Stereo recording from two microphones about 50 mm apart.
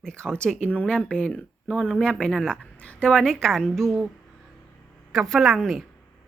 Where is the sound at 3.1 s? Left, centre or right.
Centre.